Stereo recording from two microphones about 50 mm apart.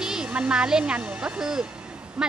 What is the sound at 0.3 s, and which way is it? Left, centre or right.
Speech, right.